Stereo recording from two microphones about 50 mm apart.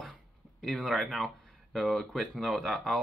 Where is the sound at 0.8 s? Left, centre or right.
Centre.